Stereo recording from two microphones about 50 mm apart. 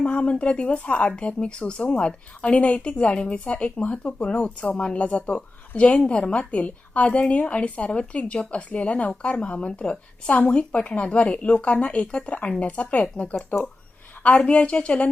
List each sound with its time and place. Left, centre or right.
0.0 s a woman's voice: left